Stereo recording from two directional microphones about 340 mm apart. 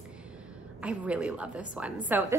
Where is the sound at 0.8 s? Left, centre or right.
Centre.